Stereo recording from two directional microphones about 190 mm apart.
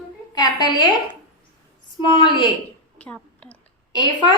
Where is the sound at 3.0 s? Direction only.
5° left (ahead or behind).